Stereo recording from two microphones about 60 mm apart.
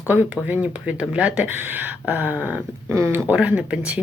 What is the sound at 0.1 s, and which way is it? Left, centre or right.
Speech, right.